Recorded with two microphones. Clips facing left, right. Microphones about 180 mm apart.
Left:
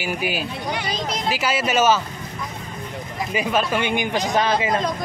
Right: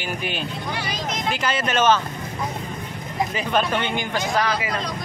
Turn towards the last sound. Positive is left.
turn(degrees=25)  # may be behind; listen again after turning